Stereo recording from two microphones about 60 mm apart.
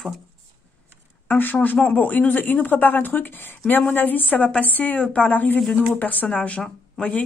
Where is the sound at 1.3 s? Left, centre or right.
Left.